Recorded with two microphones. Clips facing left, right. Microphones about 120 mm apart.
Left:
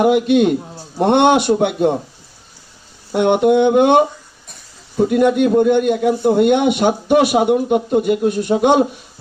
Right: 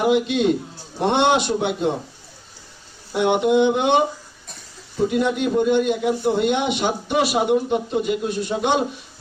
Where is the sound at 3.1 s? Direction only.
55° left (ahead or behind).